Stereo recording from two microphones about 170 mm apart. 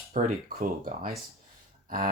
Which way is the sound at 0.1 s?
50° right (ahead or behind).